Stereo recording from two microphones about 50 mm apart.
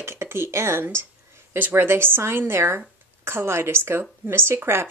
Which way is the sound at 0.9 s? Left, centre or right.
Right.